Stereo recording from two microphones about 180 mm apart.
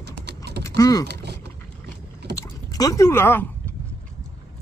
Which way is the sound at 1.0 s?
70° right (ahead or behind).